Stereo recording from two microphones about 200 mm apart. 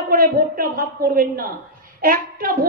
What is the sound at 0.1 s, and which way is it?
A woman's voice, 45° right (ahead or behind).